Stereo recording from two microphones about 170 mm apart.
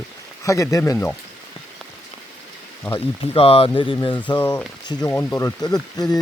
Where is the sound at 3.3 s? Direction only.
35° left (ahead or behind).